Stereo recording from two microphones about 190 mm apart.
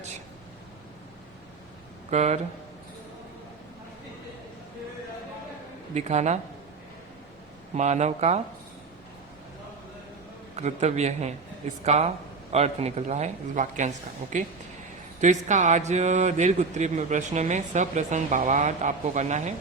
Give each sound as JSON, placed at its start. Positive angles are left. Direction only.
{"t": 2.0, "sound": "a man's voice", "side_deg": -35}
{"t": 5.9, "sound": "a man's voice", "side_deg": -35}
{"t": 7.8, "sound": "a man's voice", "side_deg": -35}
{"t": 10.5, "sound": "a man's voice", "side_deg": -35}